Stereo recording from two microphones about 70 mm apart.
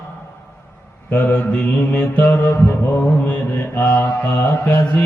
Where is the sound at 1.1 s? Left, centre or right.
Left.